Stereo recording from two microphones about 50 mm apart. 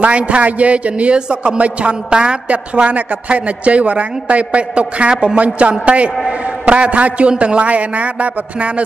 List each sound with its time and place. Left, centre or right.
0.0 s a woman's voice: right